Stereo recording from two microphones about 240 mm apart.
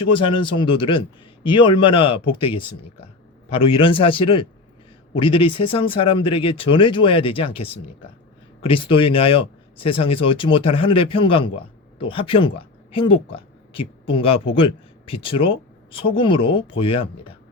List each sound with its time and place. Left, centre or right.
0.1 s speech: left